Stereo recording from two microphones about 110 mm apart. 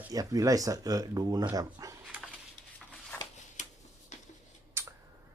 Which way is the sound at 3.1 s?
15° left (ahead or behind).